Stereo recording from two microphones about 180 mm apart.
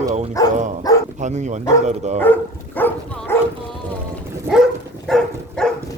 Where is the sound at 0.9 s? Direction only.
20° left (ahead or behind).